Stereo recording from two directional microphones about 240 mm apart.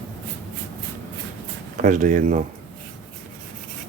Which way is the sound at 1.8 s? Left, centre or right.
Right.